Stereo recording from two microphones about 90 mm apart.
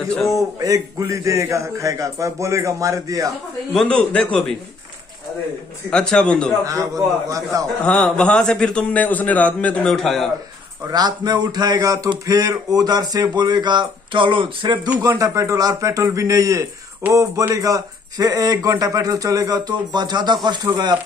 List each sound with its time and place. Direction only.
0.6 s speech: 45° right (ahead or behind)
3.7 s a man's voice: 10° left (ahead or behind)
5.9 s a man's voice: 10° left (ahead or behind)
6.6 s speech: 40° right (ahead or behind)
7.8 s a man's voice: 15° left (ahead or behind)
9.9 s a man's voice: 5° left (ahead or behind)
10.9 s speech: 50° right (ahead or behind); by 14.8 s 65° right (ahead or behind)
15.0 s speech: 35° right (ahead or behind); by 20.9 s 55° right (ahead or behind)